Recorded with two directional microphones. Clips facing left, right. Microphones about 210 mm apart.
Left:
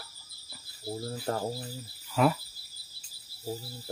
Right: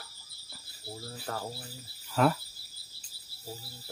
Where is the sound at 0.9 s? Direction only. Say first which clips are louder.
Left 6 dB; 35° left (ahead or behind).